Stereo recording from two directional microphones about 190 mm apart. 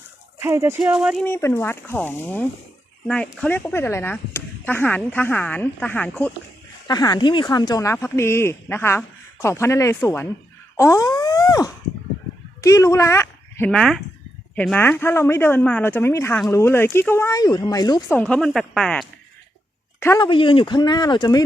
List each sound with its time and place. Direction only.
0.3 s speech: 15° right (ahead or behind)
0.8 s speech: 5° right (ahead or behind)
1.2 s speech: 10° left (ahead or behind)
6.8 s speech: 20° left (ahead or behind)
10.8 s a sound: 15° left (ahead or behind)
12.6 s speech: 15° left (ahead or behind)
13.7 s speech: 5° left (ahead or behind); by 18.2 s 20° left (ahead or behind)
18.2 s speech: centre (ahead or behind)
20.0 s speech: 15° left (ahead or behind)
20.2 s speech: 25° left (ahead or behind)